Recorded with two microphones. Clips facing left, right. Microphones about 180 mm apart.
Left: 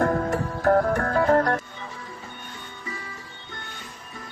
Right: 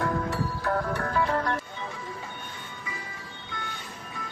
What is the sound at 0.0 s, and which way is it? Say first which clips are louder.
Music: left 5 dB; 50° left (ahead or behind).